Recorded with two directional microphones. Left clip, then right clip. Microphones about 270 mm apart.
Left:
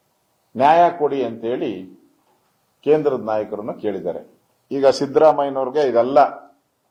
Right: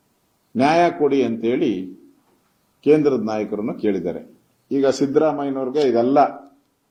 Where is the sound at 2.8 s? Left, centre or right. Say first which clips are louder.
Right 1 dB; centre.